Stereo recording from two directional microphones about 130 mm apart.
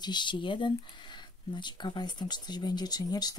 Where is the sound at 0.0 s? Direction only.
35° left (ahead or behind).